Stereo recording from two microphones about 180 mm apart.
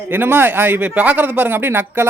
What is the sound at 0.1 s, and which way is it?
Speech, 10° right (ahead or behind).